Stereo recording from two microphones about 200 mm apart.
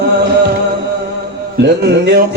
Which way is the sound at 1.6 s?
60° right (ahead or behind).